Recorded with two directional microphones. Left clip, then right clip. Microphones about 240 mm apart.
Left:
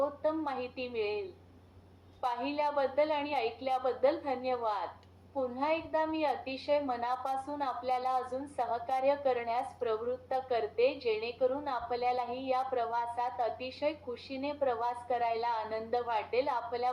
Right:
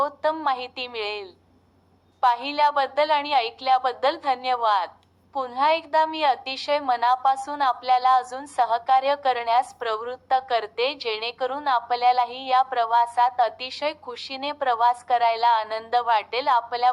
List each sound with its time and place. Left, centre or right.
0.0 s a woman's voice: right
2.2 s a woman's voice: right